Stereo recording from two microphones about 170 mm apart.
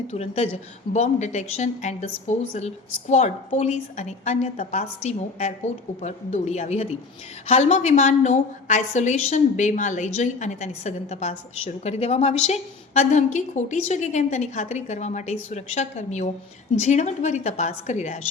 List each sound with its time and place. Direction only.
0.1 s a woman's voice: 40° left (ahead or behind)